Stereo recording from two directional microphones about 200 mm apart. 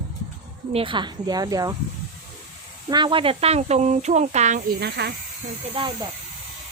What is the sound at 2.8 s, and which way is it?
Speech, 25° right (ahead or behind).